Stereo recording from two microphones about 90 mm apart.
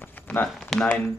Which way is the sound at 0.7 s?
10° left (ahead or behind).